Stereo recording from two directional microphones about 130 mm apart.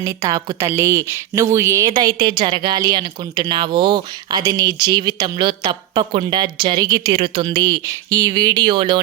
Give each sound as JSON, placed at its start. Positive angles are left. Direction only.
{"t": 0.0, "sound": "speech", "side_deg": -25}
{"t": 1.9, "sound": "speech", "side_deg": -35}